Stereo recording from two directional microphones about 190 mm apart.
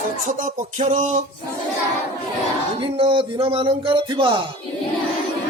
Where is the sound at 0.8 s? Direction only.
35° right (ahead or behind).